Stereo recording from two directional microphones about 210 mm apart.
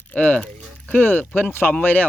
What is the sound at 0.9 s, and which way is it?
Speech, 5° left (ahead or behind).